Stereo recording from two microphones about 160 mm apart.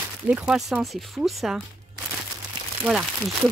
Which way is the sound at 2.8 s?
Centre (ahead or behind).